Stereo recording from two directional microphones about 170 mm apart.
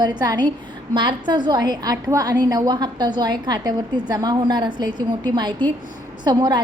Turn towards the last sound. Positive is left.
turn(degrees=-25)  # may be behind; listen again after turning